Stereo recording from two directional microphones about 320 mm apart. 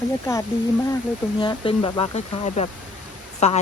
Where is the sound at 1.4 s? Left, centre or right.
Centre.